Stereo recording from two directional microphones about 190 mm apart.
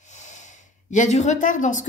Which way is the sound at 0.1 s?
40° left (ahead or behind).